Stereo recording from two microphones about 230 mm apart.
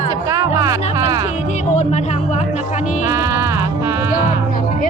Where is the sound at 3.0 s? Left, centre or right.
Centre.